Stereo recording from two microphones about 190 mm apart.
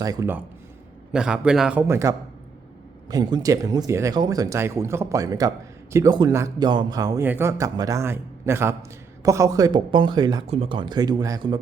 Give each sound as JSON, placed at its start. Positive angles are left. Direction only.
{"t": 0.0, "sound": "a man's voice", "side_deg": -20}